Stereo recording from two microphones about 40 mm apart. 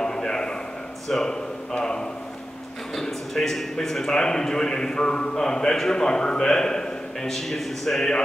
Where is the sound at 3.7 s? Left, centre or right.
Centre.